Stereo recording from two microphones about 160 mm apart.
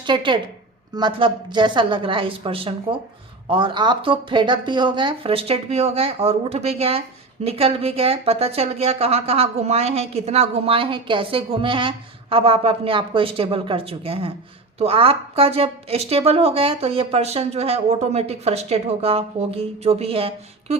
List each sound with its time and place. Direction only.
0.0 s a woman's voice: 30° right (ahead or behind)